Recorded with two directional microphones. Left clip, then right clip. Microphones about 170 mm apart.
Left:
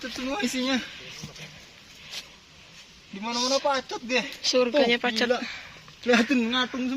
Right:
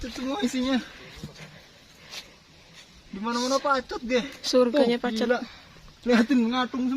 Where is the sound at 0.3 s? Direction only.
40° right (ahead or behind).